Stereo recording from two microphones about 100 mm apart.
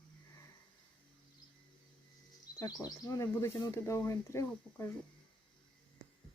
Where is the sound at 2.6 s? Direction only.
40° left (ahead or behind).